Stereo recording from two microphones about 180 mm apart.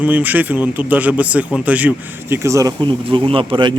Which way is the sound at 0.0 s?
10° right (ahead or behind).